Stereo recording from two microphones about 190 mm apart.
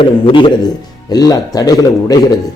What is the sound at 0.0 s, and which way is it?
A man's voice, 25° left (ahead or behind).